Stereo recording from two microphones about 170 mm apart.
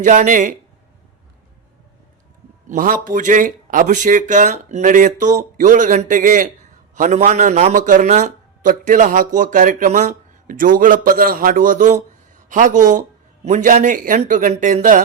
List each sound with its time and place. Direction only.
0.0 s a man's voice: 50° right (ahead or behind)
2.6 s a man's voice: 55° right (ahead or behind)